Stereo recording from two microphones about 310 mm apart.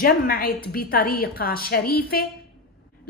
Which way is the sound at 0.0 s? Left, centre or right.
Left.